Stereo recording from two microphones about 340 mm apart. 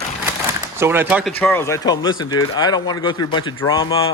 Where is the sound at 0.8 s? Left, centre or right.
Centre.